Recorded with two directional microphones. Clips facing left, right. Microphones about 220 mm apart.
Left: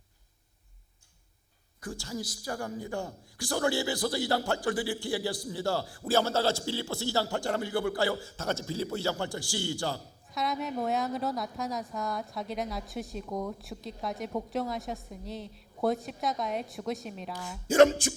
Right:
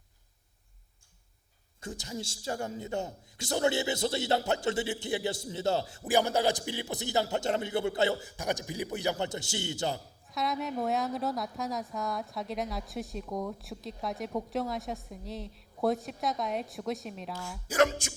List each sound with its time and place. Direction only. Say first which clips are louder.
1.8 s a man's voice: left 2 dB; 20° right (ahead or behind)
10.2 s a woman's voice: even; centre (ahead or behind)
17.3 s speech: left 6 dB; 20° left (ahead or behind)